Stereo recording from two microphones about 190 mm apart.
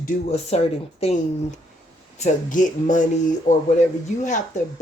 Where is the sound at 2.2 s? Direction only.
40° left (ahead or behind).